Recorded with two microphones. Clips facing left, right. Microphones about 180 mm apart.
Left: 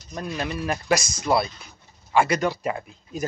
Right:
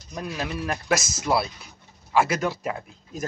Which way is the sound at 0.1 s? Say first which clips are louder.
Left 1 dB; 5° right (ahead or behind).